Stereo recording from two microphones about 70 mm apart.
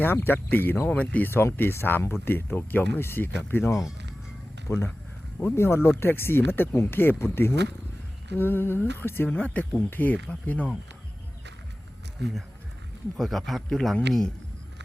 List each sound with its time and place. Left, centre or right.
0.0 s speech: left
0.9 s speech: centre
1.3 s speech: left
4.7 s speech: left
13.1 s a man's voice: centre